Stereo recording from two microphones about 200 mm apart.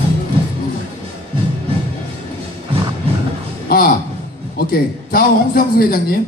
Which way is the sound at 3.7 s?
50° left (ahead or behind).